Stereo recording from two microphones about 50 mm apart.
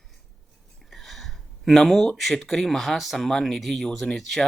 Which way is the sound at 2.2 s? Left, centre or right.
Centre.